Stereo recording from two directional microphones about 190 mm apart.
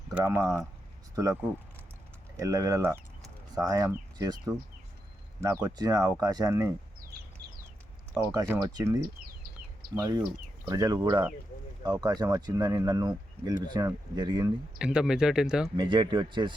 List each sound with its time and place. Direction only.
0.1 s speech: 10° right (ahead or behind)
8.3 s speech: 20° right (ahead or behind)
9.0 s a sound: 50° right (ahead or behind)
9.9 s speech: 20° right (ahead or behind)
14.8 s speech: 5° right (ahead or behind)
15.8 s speech: 25° right (ahead or behind)